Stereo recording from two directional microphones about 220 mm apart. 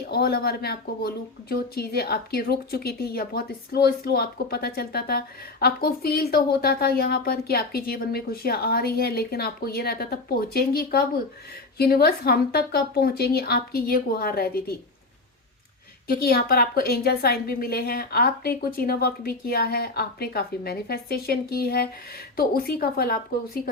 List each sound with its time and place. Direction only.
0.1 s speech: 45° left (ahead or behind)
16.0 s speech: 45° left (ahead or behind)